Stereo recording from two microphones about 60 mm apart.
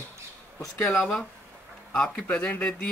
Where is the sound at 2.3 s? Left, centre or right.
Left.